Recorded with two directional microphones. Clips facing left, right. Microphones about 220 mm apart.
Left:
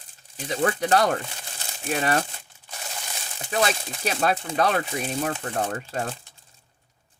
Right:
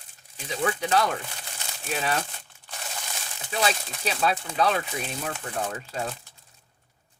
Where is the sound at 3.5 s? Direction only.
50° left (ahead or behind).